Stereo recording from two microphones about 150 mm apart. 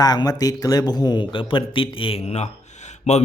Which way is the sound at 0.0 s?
25° left (ahead or behind).